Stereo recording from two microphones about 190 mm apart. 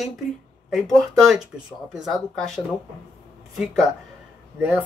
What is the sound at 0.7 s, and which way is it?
Speech, centre (ahead or behind).